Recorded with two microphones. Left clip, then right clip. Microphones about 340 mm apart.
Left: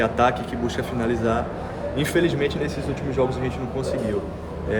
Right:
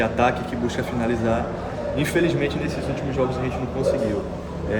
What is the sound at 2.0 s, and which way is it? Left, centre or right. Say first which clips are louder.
Speech: even; centre.